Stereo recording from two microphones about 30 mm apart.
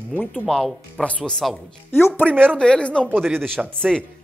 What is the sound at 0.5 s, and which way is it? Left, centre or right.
Speech, left.